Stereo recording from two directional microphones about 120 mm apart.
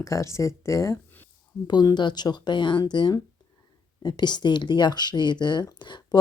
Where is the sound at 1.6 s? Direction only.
35° left (ahead or behind).